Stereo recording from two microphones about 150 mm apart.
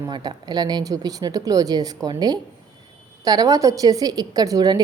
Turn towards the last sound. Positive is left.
turn(degrees=-25)  # may be behind; listen again after turning